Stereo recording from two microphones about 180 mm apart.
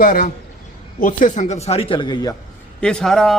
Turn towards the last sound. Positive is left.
turn(degrees=0)  # may be behind; listen again after turning